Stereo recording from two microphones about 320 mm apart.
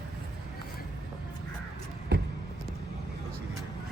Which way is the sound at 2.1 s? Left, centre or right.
Right.